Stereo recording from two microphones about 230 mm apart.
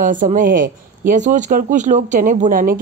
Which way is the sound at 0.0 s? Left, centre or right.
Right.